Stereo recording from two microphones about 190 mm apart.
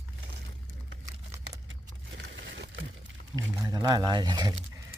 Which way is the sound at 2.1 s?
75° right (ahead or behind).